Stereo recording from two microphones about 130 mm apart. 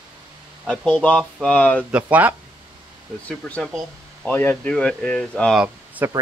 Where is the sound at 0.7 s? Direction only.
5° left (ahead or behind).